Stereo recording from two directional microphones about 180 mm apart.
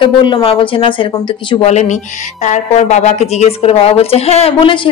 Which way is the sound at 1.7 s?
40° left (ahead or behind).